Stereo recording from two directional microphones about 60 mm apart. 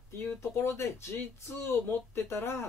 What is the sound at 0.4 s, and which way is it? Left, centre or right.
Speech, left.